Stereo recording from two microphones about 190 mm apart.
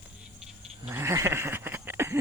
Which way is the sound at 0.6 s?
10° right (ahead or behind).